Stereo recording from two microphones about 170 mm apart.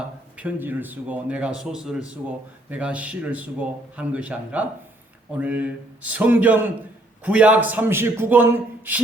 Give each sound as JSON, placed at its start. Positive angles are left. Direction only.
{"t": 0.3, "sound": "a man's voice", "side_deg": -10}